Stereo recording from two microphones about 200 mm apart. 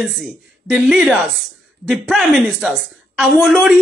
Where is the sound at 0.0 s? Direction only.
Centre (ahead or behind).